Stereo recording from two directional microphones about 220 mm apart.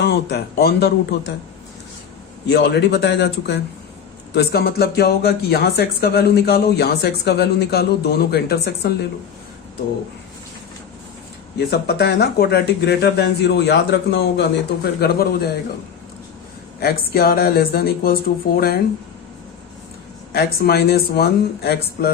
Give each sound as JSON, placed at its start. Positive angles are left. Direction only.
{"t": 0.0, "sound": "speech", "side_deg": 50}
{"t": 2.5, "sound": "speech", "side_deg": 50}
{"t": 11.5, "sound": "speech", "side_deg": 50}
{"t": 16.8, "sound": "speech", "side_deg": 45}
{"t": 20.3, "sound": "speech", "side_deg": 45}